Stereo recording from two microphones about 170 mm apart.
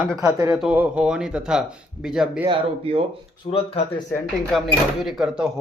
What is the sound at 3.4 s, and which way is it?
Speech, 55° left (ahead or behind).